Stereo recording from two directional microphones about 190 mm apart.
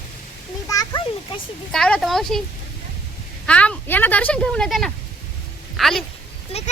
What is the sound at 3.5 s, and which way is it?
Speech, 5° left (ahead or behind).